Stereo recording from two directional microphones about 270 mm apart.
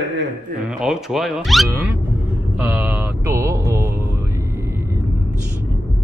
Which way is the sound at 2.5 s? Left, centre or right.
Centre.